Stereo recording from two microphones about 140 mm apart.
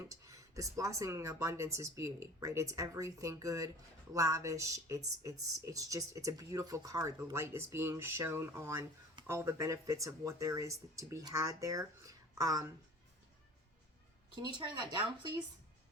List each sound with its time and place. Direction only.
0.1 s speech: 25° right (ahead or behind)
14.4 s speech: 35° right (ahead or behind)